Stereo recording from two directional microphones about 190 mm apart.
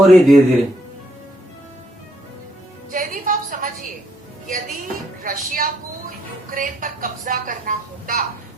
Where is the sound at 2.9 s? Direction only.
45° right (ahead or behind).